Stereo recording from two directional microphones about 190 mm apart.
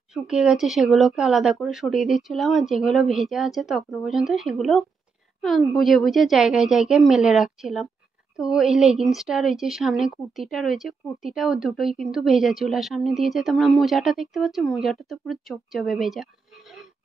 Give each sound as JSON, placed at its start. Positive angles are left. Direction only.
{"t": 0.1, "sound": "speech", "side_deg": -5}